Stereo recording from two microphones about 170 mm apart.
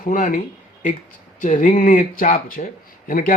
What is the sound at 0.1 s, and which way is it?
Speech, 50° left (ahead or behind).